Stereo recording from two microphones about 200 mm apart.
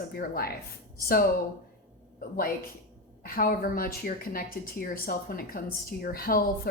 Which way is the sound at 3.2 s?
45° left (ahead or behind).